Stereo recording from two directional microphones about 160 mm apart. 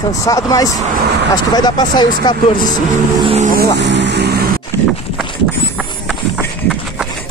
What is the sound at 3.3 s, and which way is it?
Speech, 45° right (ahead or behind).